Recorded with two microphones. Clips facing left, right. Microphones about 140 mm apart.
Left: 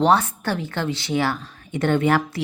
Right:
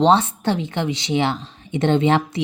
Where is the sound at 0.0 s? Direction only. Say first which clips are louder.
Right 2 dB; 20° right (ahead or behind).